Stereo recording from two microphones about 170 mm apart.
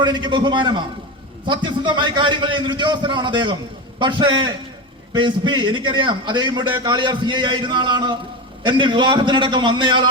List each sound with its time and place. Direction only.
0.0 s a man's voice: 25° right (ahead or behind)